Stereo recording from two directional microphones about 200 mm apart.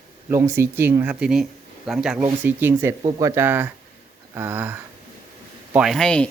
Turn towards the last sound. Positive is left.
turn(degrees=5)  # may be behind; listen again after turning